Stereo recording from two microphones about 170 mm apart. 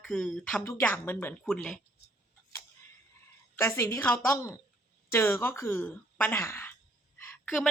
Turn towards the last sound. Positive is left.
turn(degrees=10)  # may be behind; listen again after turning